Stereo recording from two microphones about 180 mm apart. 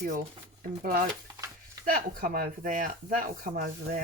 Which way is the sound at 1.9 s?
55° right (ahead or behind).